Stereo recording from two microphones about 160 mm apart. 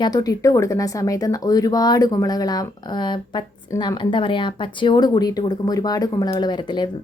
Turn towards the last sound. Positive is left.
turn(degrees=30)  # may be behind; listen again after turning